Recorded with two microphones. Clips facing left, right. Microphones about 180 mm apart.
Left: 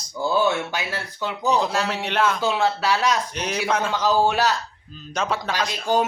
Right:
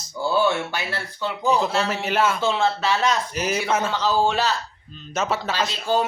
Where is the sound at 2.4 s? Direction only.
10° left (ahead or behind).